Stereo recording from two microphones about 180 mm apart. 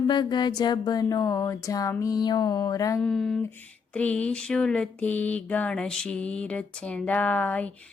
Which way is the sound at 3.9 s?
5° left (ahead or behind).